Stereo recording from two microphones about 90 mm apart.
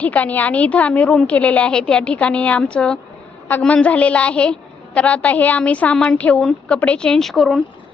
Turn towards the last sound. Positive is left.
turn(degrees=0)  # may be behind; listen again after turning